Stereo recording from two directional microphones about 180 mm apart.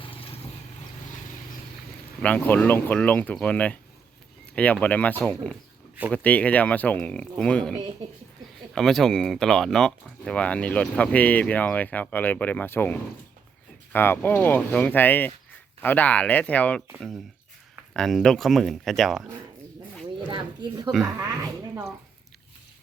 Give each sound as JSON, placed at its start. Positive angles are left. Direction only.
{"t": 2.2, "sound": "speech", "side_deg": 10}
{"t": 20.3, "sound": "speech", "side_deg": -25}